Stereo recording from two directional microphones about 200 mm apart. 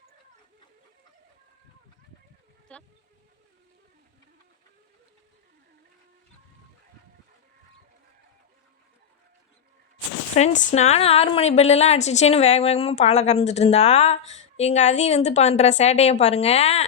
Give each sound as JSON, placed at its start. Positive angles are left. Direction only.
{"t": 2.7, "sound": "speech", "side_deg": 5}
{"t": 10.3, "sound": "a woman's voice", "side_deg": 35}